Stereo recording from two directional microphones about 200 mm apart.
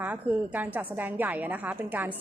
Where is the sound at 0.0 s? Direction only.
10° right (ahead or behind).